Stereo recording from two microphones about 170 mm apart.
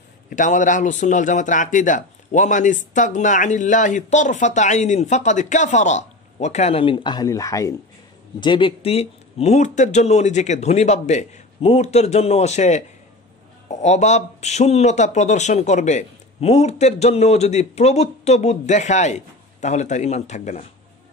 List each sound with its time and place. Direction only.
0.3 s a man's voice: 50° left (ahead or behind)